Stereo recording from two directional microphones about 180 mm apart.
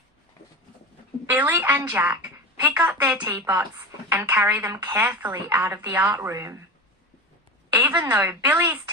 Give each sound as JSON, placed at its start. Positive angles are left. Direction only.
{"t": 1.3, "sound": "a woman's voice", "side_deg": -10}
{"t": 7.7, "sound": "a woman's voice", "side_deg": -10}